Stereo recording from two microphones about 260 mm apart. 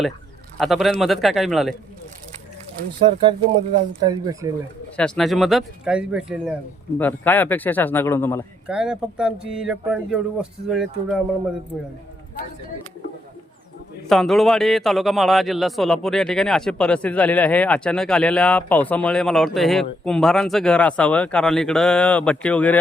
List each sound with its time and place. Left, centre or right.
0.6 s a man's voice: centre
3.0 s speech: centre
4.9 s a man's voice: centre
7.0 s a man's voice: centre
8.6 s a man's voice: centre
14.1 s a man's voice: centre